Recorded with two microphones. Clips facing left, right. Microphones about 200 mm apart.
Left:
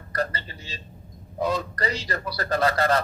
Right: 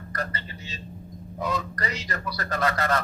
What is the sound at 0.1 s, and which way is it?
A man's voice, 30° left (ahead or behind).